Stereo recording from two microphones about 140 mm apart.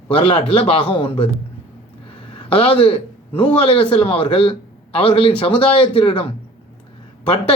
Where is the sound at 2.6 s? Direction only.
40° left (ahead or behind).